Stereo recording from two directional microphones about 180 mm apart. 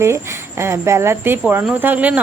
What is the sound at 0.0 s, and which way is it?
Speech, 15° right (ahead or behind).